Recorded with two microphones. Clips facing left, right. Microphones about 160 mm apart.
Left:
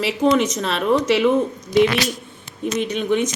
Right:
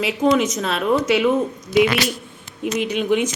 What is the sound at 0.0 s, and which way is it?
A woman's voice, centre (ahead or behind).